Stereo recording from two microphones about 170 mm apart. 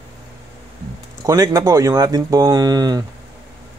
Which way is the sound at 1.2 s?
20° right (ahead or behind).